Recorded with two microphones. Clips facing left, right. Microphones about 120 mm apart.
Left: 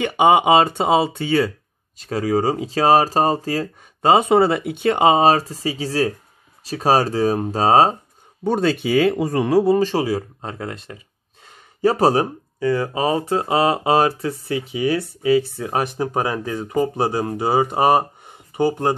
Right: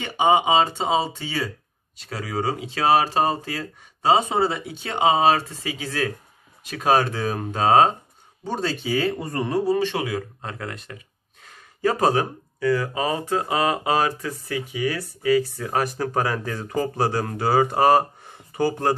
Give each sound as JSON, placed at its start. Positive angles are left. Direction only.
{"t": 0.0, "sound": "speech", "side_deg": 60}
{"t": 2.0, "sound": "speech", "side_deg": 45}
{"t": 8.5, "sound": "speech", "side_deg": 60}
{"t": 9.8, "sound": "speech", "side_deg": 35}